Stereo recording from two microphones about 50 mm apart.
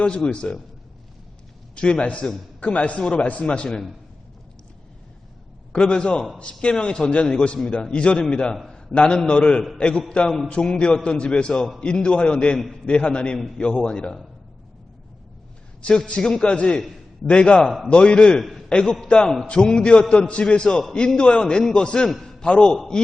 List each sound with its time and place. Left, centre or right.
0.0 s a man's voice: centre
1.7 s a man's voice: left
5.7 s a man's voice: centre
16.0 s a man's voice: centre
22.1 s a man's voice: centre
22.4 s a man's voice: left
22.7 s a man's voice: centre